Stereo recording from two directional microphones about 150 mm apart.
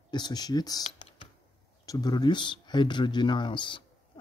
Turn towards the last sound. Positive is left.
turn(degrees=30)  # may be behind; listen again after turning